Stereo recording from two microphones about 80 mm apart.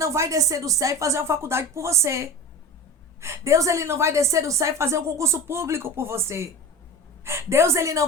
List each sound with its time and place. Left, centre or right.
0.0 s a woman's voice: right